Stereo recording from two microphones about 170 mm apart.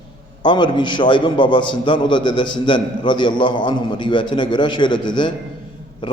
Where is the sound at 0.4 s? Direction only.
30° left (ahead or behind).